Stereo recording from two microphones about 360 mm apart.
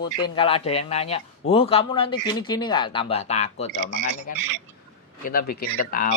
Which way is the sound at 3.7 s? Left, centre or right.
Right.